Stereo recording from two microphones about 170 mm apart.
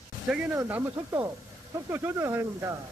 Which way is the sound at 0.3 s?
10° right (ahead or behind).